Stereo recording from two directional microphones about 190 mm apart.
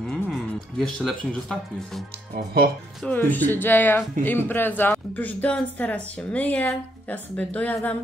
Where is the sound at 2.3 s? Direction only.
50° right (ahead or behind).